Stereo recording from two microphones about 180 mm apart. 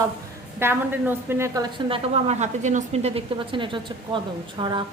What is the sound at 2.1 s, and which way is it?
A woman's voice, 35° right (ahead or behind).